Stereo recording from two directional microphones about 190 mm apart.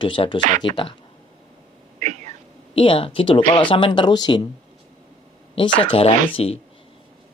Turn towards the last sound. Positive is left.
turn(degrees=30)  # may be behind; listen again after turning